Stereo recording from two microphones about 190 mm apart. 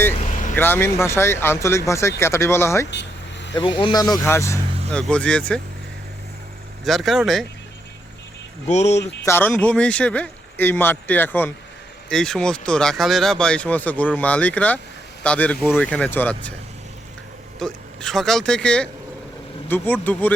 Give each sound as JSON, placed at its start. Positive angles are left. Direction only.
{"t": 0.5, "sound": "speech", "side_deg": 10}
{"t": 2.9, "sound": "vehicle", "side_deg": 65}
{"t": 3.5, "sound": "speech", "side_deg": 25}
{"t": 6.8, "sound": "speech", "side_deg": 0}
{"t": 8.6, "sound": "speech", "side_deg": 35}
{"t": 9.2, "sound": "speech", "side_deg": 10}
{"t": 17.6, "sound": "speech", "side_deg": 0}